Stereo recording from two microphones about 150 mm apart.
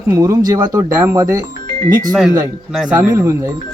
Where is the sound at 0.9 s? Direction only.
15° right (ahead or behind).